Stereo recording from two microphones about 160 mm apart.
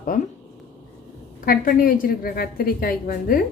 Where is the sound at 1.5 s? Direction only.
60° left (ahead or behind).